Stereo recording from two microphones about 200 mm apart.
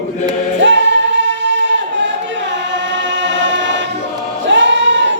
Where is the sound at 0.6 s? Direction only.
65° right (ahead or behind).